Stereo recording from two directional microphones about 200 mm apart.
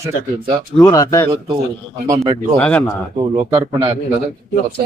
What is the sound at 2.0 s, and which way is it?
Speech, 15° right (ahead or behind).